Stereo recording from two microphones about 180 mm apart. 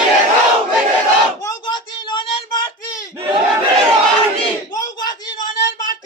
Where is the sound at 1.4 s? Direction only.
20° left (ahead or behind).